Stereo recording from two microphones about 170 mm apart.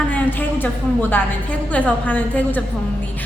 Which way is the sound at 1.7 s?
10° left (ahead or behind).